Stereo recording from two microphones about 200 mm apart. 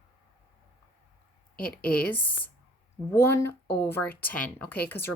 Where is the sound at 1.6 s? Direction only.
50° left (ahead or behind).